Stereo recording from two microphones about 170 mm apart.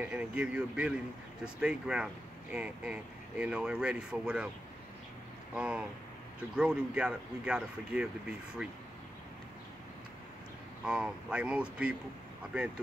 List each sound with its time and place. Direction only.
0.0 s speech: 10° right (ahead or behind)
5.5 s speech: 5° right (ahead or behind)
10.9 s speech: 5° right (ahead or behind)